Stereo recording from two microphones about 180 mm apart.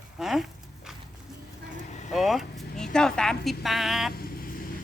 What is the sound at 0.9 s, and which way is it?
Music, 5° right (ahead or behind).